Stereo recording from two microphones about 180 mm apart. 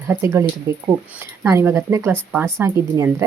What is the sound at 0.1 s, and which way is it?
A woman's voice, 15° right (ahead or behind).